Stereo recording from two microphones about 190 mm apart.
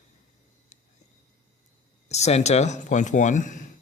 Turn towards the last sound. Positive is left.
turn(degrees=40)  # may be behind; listen again after turning